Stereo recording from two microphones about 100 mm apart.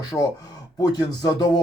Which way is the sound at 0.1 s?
15° left (ahead or behind).